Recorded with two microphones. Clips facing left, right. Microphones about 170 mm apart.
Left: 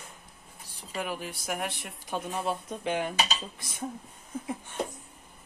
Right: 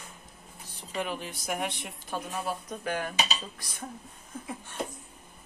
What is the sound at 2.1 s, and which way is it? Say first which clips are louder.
Speech: left 2 dB; 25° left (ahead or behind).